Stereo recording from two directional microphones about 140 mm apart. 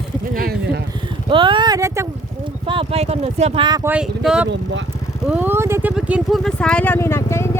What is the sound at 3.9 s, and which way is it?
Speech, 5° right (ahead or behind).